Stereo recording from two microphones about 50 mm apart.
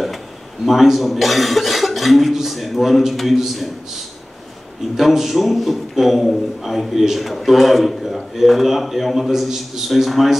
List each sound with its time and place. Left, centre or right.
0.7 s a man's voice: centre
4.9 s a man's voice: centre